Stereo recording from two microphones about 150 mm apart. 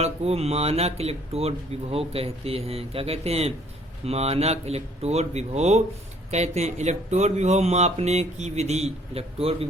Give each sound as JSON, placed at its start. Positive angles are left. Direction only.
{"t": 0.0, "sound": "speech", "side_deg": -45}